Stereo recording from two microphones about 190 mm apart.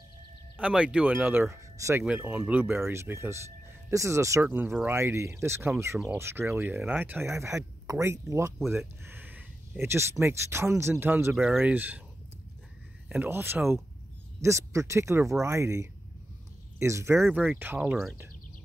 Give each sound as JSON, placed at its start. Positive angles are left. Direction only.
{"t": 0.6, "sound": "speech", "side_deg": -5}
{"t": 13.1, "sound": "speech", "side_deg": -10}